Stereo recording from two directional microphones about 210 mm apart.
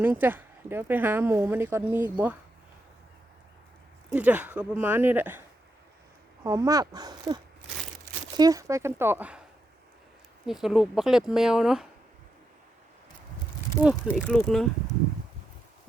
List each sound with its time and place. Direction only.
0.0 s speech: 10° right (ahead or behind)
4.1 s speech: 5° right (ahead or behind)
6.4 s speech: 15° right (ahead or behind)
10.4 s speech: centre (ahead or behind)
14.2 s speech: 5° left (ahead or behind)